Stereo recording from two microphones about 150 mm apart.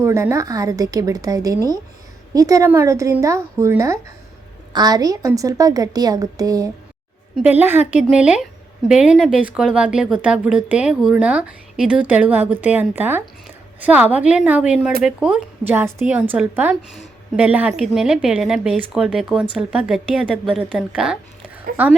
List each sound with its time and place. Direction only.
0.0 s a woman's voice: 20° right (ahead or behind)
7.4 s a woman's voice: 15° right (ahead or behind)